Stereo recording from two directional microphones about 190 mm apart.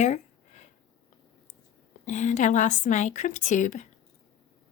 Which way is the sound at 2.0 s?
40° left (ahead or behind).